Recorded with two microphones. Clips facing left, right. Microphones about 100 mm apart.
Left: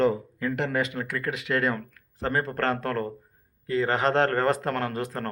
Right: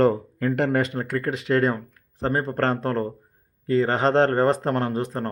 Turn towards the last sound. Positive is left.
turn(degrees=-20)  # may be behind; listen again after turning